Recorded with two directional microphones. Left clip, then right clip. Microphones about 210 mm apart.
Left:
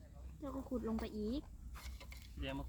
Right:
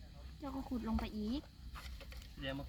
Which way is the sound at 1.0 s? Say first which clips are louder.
Even; 40° right (ahead or behind).